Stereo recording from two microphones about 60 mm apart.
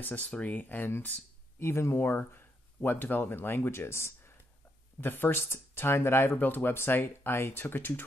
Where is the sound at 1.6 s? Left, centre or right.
Left.